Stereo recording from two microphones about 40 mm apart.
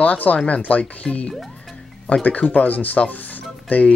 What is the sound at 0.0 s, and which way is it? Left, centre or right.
Speech, left.